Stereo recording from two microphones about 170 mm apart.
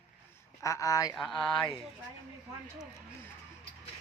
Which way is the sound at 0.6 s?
20° left (ahead or behind).